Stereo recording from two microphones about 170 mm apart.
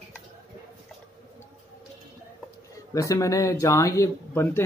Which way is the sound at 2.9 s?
20° left (ahead or behind).